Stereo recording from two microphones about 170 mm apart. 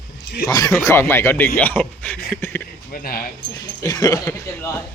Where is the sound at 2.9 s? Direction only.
60° left (ahead or behind).